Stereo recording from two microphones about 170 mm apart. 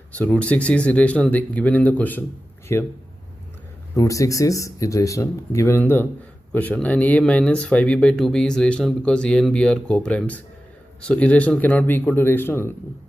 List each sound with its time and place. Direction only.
0.1 s speech: 10° left (ahead or behind)
3.9 s speech: 20° left (ahead or behind)